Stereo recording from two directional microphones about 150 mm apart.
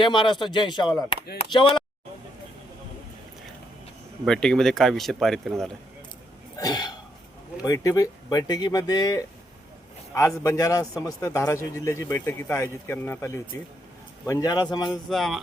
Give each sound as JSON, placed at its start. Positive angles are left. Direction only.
{"t": 0.0, "sound": "speech", "side_deg": 30}
{"t": 4.3, "sound": "speech", "side_deg": 5}
{"t": 6.6, "sound": "a sound", "side_deg": 25}
{"t": 7.6, "sound": "a man's voice", "side_deg": 20}
{"t": 14.8, "sound": "speech", "side_deg": 0}